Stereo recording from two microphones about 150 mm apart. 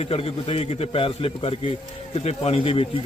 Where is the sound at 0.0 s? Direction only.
40° left (ahead or behind).